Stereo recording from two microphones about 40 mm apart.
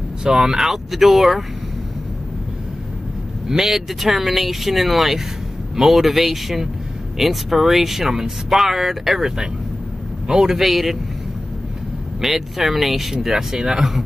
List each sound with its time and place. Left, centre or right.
0.2 s speech: centre
3.4 s speech: centre
12.2 s speech: centre